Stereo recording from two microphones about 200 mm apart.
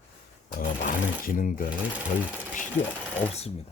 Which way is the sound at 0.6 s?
40° left (ahead or behind).